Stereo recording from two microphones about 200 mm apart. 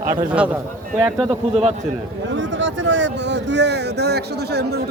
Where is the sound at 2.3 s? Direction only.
65° right (ahead or behind).